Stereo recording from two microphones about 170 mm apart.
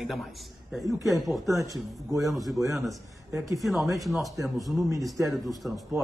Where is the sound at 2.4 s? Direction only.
Centre (ahead or behind).